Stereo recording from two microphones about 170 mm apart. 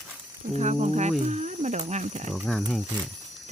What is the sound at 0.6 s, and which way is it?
Speech, 40° right (ahead or behind).